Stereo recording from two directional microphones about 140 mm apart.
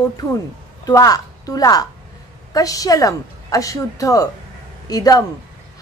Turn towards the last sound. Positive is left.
turn(degrees=25)  # may be behind; listen again after turning